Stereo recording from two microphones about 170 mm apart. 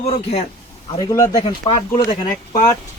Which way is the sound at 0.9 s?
20° left (ahead or behind).